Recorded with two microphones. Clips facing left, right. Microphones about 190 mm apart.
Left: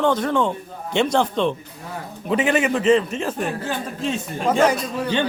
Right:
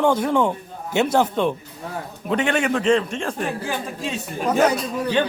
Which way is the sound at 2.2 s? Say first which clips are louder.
Left 2 dB; 5° left (ahead or behind).